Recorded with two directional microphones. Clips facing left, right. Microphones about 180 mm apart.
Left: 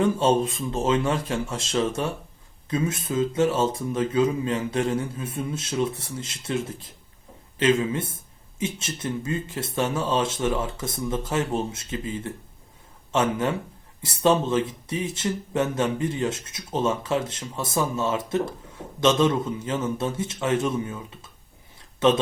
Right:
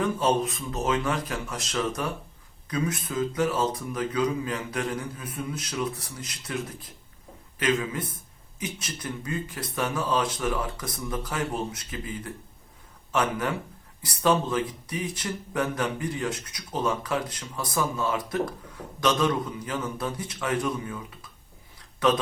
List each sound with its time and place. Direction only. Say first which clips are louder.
0.0 s speech: left 4 dB; 25° left (ahead or behind)